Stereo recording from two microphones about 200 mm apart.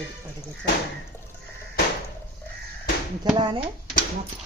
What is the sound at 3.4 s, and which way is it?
Speech, 25° right (ahead or behind).